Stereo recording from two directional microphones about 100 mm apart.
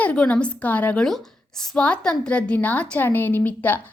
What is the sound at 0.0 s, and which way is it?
A woman's voice, 15° left (ahead or behind).